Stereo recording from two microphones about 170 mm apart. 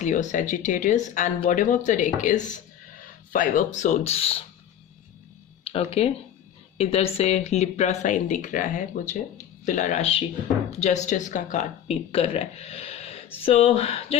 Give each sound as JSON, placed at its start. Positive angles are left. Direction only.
{"t": 0.0, "sound": "speech", "side_deg": 45}
{"t": 5.6, "sound": "speech", "side_deg": 35}
{"t": 12.1, "sound": "speech", "side_deg": 35}